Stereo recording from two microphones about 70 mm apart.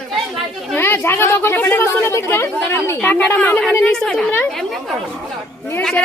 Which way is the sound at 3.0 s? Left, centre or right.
Left.